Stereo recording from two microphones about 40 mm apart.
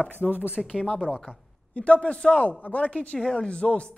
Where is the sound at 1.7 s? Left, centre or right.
Left.